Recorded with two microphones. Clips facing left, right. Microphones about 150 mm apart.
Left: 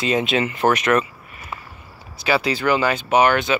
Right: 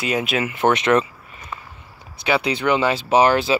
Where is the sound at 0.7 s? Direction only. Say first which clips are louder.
Right 2 dB; 25° right (ahead or behind).